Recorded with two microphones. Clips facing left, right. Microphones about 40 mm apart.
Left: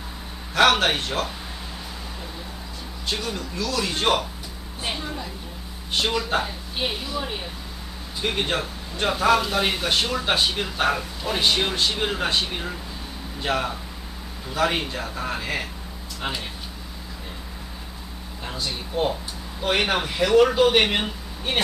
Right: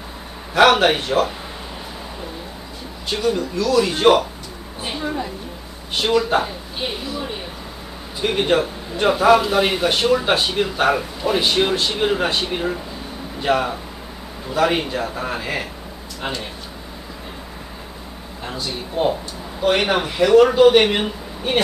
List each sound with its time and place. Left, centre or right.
0.6 s a man's voice: centre
3.1 s speech: centre
5.0 s a woman's voice: centre
5.9 s speech: centre
8.2 s a man's voice: centre
18.4 s speech: centre